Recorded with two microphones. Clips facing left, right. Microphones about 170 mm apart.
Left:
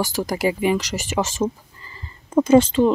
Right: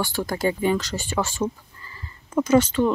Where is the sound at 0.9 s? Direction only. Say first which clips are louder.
Left 2 dB; 90° left.